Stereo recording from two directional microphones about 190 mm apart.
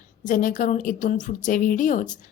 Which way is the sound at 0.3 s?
45° left (ahead or behind).